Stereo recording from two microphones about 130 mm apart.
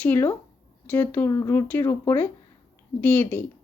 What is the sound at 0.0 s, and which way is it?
A woman's voice, 15° left (ahead or behind).